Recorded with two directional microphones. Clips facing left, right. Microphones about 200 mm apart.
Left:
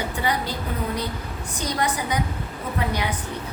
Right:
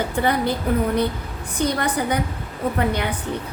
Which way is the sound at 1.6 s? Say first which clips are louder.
Right 4 dB; 55° right (ahead or behind).